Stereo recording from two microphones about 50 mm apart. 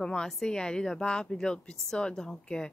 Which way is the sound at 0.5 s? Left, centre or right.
Centre.